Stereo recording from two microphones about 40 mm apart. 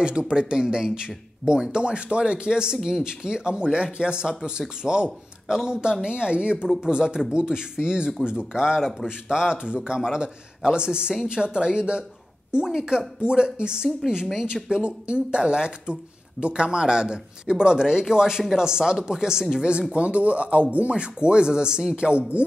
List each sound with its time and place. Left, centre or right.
0.0 s speech: right
12.4 s a sound: right
12.7 s speech: centre
19.9 s speech: right